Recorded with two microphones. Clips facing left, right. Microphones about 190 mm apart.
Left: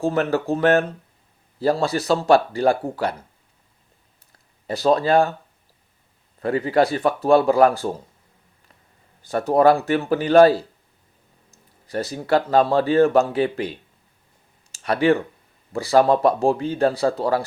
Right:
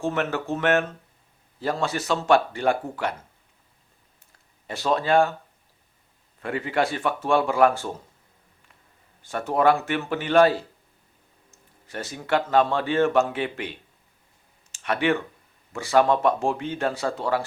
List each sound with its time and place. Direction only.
0.0 s speech: 35° left (ahead or behind)
4.6 s speech: 35° left (ahead or behind)
6.4 s speech: 35° left (ahead or behind)
9.2 s speech: 35° left (ahead or behind)
14.7 s a sound: 35° left (ahead or behind)
15.7 s speech: 35° left (ahead or behind)